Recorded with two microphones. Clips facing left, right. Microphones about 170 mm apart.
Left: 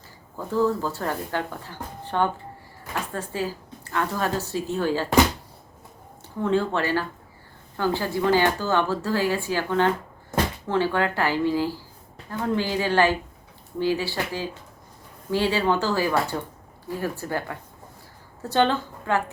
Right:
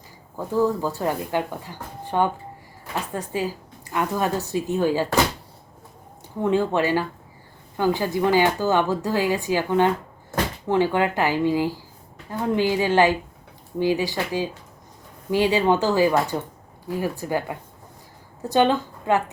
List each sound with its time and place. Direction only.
0.3 s speech: 15° right (ahead or behind)
6.4 s speech: 15° right (ahead or behind)